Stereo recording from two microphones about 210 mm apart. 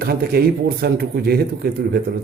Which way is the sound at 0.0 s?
50° right (ahead or behind).